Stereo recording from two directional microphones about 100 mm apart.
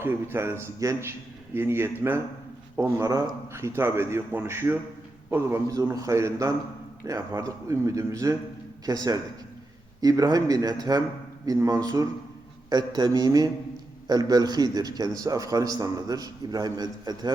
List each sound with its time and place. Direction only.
0.0 s a man's voice: 25° right (ahead or behind)
5.6 s a man's voice: 35° right (ahead or behind)